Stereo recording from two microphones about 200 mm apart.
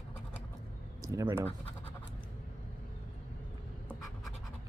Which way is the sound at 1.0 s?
15° right (ahead or behind).